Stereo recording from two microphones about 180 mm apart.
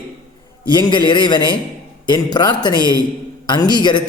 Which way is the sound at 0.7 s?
25° left (ahead or behind).